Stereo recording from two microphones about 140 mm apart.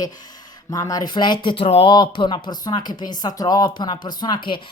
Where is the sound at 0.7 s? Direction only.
25° left (ahead or behind).